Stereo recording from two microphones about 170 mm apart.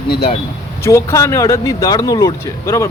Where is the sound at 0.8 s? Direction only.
15° left (ahead or behind).